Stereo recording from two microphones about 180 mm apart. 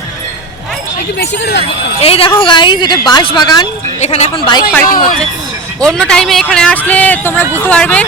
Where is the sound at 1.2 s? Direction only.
70° left (ahead or behind).